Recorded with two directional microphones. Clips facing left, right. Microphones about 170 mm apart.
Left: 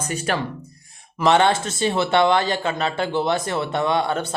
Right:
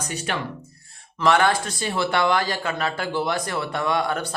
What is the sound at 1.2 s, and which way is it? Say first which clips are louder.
Speech: left 2 dB; 25° left (ahead or behind).